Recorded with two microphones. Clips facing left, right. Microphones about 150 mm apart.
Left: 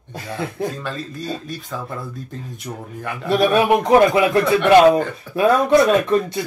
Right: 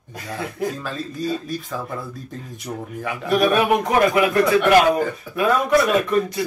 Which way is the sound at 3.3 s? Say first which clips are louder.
Left 2 dB; 30° left (ahead or behind).